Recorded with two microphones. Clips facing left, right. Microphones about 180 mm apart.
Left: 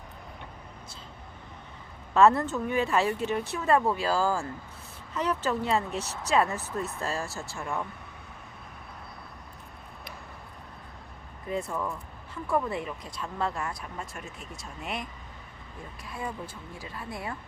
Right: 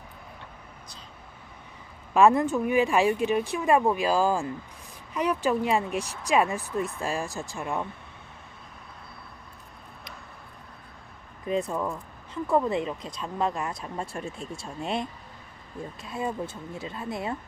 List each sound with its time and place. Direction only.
2.1 s speech: 15° right (ahead or behind)
11.4 s speech: 20° right (ahead or behind)
13.9 s speech: 30° right (ahead or behind)